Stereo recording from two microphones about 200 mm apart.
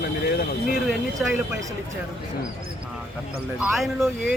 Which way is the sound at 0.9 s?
Centre (ahead or behind).